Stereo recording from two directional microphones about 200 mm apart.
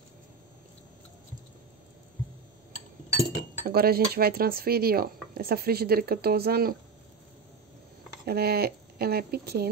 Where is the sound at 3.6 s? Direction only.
50° right (ahead or behind).